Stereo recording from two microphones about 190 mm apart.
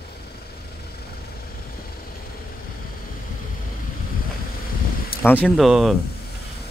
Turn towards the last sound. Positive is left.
turn(degrees=0)  # may be behind; listen again after turning